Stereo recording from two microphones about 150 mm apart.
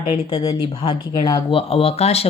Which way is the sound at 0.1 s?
25° left (ahead or behind).